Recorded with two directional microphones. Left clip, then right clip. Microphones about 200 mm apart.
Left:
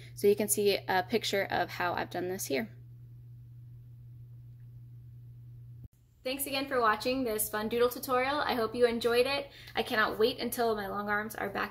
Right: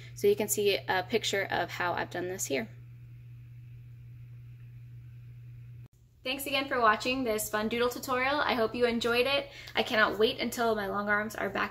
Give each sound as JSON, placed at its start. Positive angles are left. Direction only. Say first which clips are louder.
{"t": 0.0, "sound": "speech", "louder": "even", "side_deg": 15}
{"t": 6.2, "sound": "a woman's voice", "louder": "right 3 dB", "side_deg": 0}